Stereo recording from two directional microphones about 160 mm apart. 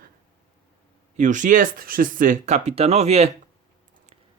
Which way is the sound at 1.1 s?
50° right (ahead or behind).